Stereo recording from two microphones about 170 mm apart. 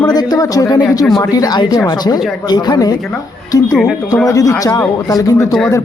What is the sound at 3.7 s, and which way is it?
Speech, centre (ahead or behind).